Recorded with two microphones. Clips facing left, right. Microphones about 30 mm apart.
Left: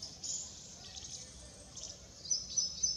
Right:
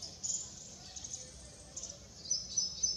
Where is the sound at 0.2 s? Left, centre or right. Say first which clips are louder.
Right 3 dB; left.